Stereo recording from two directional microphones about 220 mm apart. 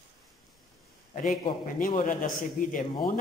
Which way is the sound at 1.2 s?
35° left (ahead or behind).